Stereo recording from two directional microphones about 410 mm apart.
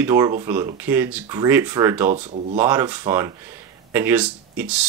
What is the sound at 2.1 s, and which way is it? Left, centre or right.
Speech, centre.